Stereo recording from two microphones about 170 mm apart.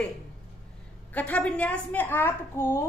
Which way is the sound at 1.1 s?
10° left (ahead or behind).